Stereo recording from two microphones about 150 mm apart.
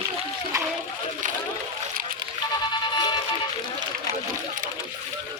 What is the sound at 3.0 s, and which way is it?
Music, 30° left (ahead or behind).